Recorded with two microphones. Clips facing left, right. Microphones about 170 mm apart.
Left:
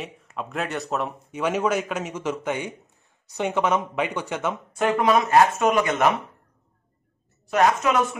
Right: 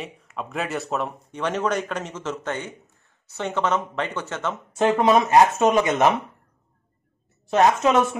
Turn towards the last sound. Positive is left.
turn(degrees=-25)  # may be behind; listen again after turning